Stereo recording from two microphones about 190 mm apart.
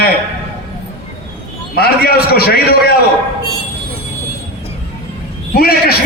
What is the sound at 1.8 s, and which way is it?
A man's voice, 55° left (ahead or behind).